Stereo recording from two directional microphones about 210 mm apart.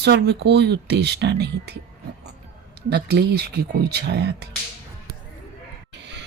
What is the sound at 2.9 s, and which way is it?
Speech, 50° right (ahead or behind).